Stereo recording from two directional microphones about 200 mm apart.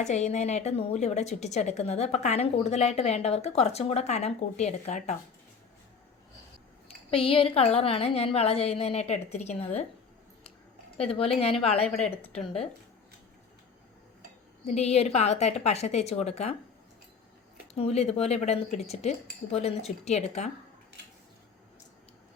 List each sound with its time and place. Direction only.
0.0 s a woman's voice: 35° left (ahead or behind)
6.8 s speech: 25° left (ahead or behind)
10.9 s speech: 30° left (ahead or behind)
14.7 s a woman's voice: 30° left (ahead or behind)
17.7 s a woman's voice: 30° left (ahead or behind)